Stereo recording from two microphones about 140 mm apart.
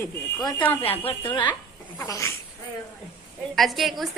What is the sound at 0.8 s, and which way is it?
Speech, 45° left (ahead or behind).